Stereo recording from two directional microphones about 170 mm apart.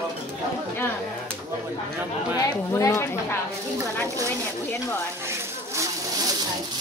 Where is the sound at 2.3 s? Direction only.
20° left (ahead or behind).